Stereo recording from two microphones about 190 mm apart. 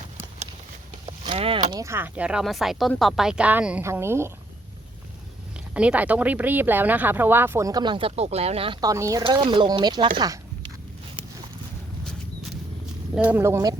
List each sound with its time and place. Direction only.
1.0 s speech: 25° right (ahead or behind)
5.7 s speech: 5° right (ahead or behind); by 10.1 s 25° right (ahead or behind)
13.1 s speech: 10° right (ahead or behind)